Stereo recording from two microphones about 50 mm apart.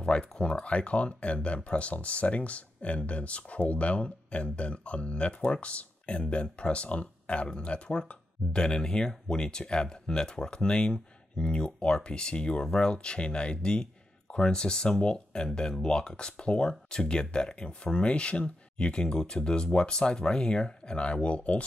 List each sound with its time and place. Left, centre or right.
0.0 s speech: centre